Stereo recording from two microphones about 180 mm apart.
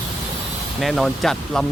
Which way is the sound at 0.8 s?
Centre (ahead or behind).